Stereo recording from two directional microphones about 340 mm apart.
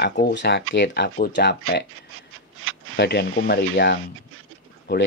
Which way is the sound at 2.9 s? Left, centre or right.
Left.